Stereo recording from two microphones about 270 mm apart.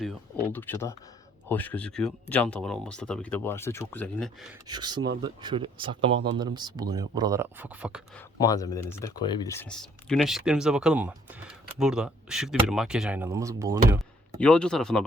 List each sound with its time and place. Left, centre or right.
0.0 s speech: centre
4.7 s speech: centre
8.4 s speech: centre
14.3 s speech: centre